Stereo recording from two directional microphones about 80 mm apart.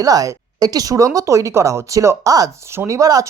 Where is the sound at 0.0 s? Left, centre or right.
Right.